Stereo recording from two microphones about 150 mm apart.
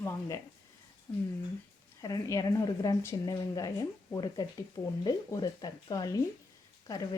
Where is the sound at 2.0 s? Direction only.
25° left (ahead or behind).